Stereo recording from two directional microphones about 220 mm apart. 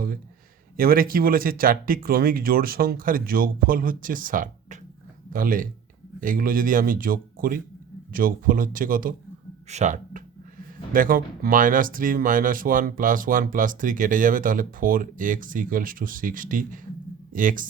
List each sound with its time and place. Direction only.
0.8 s speech: 40° right (ahead or behind)